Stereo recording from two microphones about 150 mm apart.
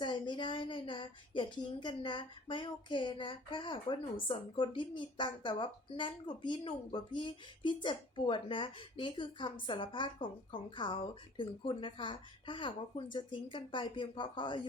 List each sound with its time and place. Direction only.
0.0 s a woman's voice: 30° left (ahead or behind)